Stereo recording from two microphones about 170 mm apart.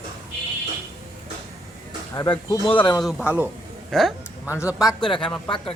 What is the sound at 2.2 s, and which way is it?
Speech, 25° left (ahead or behind).